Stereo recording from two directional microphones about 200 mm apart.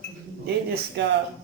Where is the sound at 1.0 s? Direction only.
60° right (ahead or behind).